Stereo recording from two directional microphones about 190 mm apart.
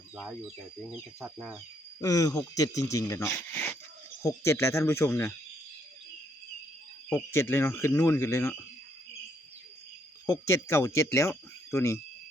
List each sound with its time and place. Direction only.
2.0 s speech: 20° left (ahead or behind)
7.1 s speech: 15° left (ahead or behind)
10.2 s speech: 15° left (ahead or behind)